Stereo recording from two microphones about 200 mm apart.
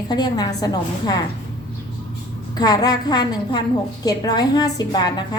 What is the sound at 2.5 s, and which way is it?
A woman's voice, 20° left (ahead or behind).